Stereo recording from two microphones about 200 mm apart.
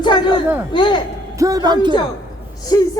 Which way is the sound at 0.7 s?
25° left (ahead or behind).